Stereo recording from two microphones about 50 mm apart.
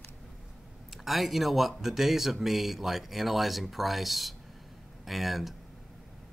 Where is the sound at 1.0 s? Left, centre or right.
Centre.